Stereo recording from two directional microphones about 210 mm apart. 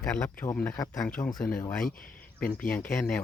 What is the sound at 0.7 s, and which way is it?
Speech, 15° left (ahead or behind).